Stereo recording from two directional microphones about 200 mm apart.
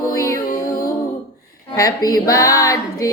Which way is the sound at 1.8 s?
20° left (ahead or behind).